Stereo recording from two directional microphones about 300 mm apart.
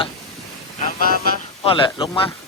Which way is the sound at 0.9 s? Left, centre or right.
Left.